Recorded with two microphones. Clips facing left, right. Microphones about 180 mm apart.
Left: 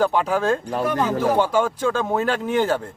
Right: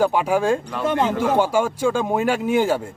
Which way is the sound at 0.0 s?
10° right (ahead or behind).